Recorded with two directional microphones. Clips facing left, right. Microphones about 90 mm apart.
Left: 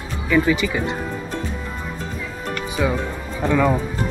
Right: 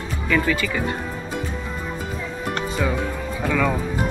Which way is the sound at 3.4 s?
15° left (ahead or behind).